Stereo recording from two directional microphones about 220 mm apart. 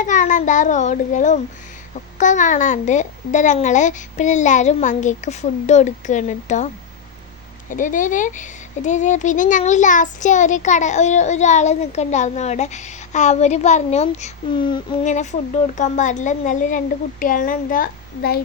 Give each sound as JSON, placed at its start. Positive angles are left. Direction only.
{"t": 0.0, "sound": "speech", "side_deg": 35}
{"t": 7.7, "sound": "speech", "side_deg": 35}
{"t": 15.0, "sound": "speech", "side_deg": 35}